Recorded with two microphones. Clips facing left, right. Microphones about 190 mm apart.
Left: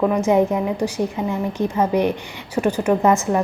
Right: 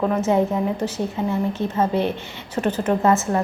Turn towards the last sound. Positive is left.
turn(degrees=15)  # may be behind; listen again after turning